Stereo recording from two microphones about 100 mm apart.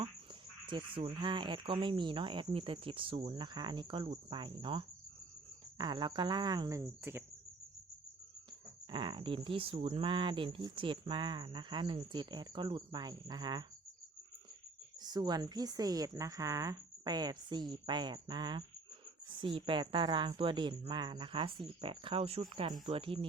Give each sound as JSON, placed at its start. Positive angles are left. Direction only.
{"t": 0.6, "sound": "speech", "side_deg": -55}
{"t": 6.7, "sound": "speech", "side_deg": -25}
{"t": 8.9, "sound": "speech", "side_deg": -55}
{"t": 15.0, "sound": "speech", "side_deg": -45}
{"t": 22.4, "sound": "speech", "side_deg": -50}
{"t": 22.9, "sound": "speech", "side_deg": -65}